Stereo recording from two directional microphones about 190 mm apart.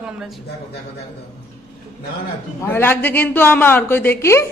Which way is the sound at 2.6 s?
10° left (ahead or behind).